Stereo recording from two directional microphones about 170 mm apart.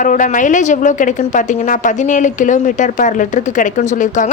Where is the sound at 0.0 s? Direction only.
50° left (ahead or behind).